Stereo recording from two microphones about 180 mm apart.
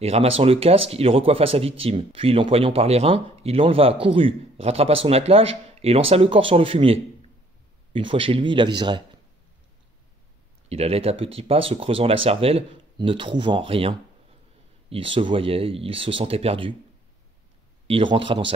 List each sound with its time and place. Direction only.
0.0 s speech: 35° right (ahead or behind)
10.7 s speech: 35° right (ahead or behind)
17.8 s speech: 30° right (ahead or behind)